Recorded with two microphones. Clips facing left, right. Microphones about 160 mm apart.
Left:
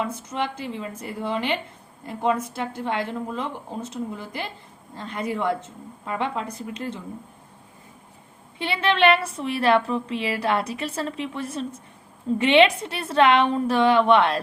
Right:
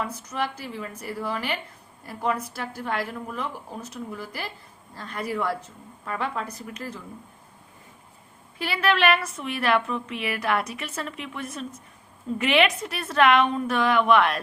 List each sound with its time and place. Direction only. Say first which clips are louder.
0.0 s a woman's voice: left 2 dB; 25° left (ahead or behind)
8.5 s a woman's voice: left 1 dB; 25° left (ahead or behind)